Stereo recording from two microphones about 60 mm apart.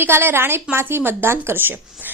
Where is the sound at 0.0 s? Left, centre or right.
Right.